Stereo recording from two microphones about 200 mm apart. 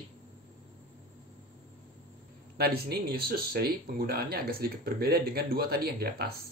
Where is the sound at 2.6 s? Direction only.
50° right (ahead or behind).